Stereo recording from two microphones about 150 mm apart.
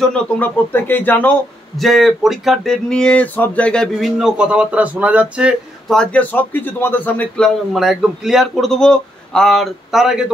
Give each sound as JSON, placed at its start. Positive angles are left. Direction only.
{"t": 0.0, "sound": "speech", "side_deg": 10}
{"t": 1.8, "sound": "a man's voice", "side_deg": 0}
{"t": 5.9, "sound": "a man's voice", "side_deg": 10}